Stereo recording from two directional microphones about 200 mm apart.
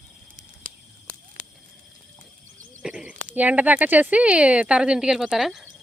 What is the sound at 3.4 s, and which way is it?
Speech, 10° right (ahead or behind).